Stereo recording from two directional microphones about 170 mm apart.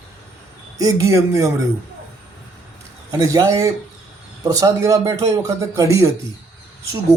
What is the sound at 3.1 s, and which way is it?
Speech, 20° right (ahead or behind).